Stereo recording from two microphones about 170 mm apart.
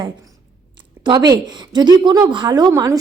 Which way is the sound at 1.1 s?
25° right (ahead or behind).